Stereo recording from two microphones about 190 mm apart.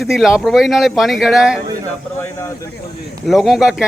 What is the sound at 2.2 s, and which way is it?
Speech, 15° left (ahead or behind).